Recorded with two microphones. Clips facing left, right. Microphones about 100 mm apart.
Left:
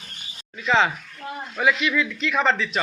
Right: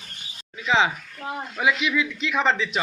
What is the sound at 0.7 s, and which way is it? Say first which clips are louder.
Speech: left 1 dB; 10° right (ahead or behind).